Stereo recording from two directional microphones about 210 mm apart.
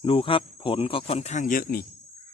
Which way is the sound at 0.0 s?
25° left (ahead or behind).